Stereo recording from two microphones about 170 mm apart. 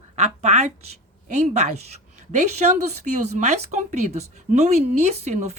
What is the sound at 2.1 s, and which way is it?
Speech, 40° right (ahead or behind).